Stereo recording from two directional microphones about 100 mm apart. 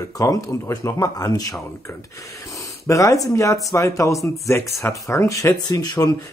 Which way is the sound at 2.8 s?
30° left (ahead or behind).